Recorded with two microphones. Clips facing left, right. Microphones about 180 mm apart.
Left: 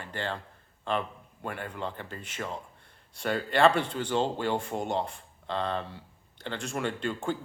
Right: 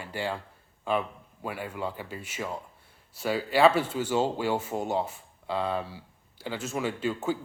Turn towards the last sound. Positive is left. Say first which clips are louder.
# right 2 dB
turn(degrees=-5)  # may be behind; listen again after turning